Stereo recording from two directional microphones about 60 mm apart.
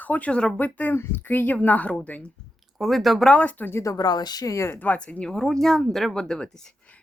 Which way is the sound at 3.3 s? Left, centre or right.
Left.